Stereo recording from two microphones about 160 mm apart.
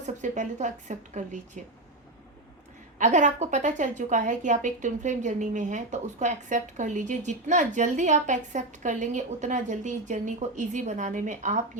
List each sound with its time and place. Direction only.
0.0 s a woman's voice: 50° right (ahead or behind)
3.0 s a woman's voice: 50° right (ahead or behind)